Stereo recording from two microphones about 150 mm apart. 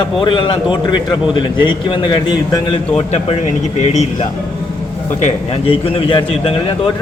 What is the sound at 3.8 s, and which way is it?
A man's voice, 50° left (ahead or behind).